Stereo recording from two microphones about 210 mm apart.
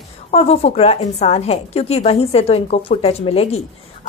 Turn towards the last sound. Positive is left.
turn(degrees=30)  # may be behind; listen again after turning